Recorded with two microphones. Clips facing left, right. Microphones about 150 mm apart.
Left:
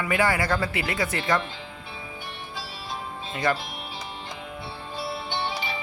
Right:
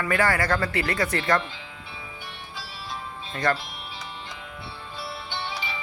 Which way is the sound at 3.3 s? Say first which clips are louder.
Even; 5° left (ahead or behind).